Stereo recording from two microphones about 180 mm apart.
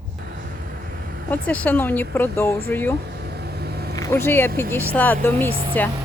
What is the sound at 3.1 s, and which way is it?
Vehicle, 65° right (ahead or behind).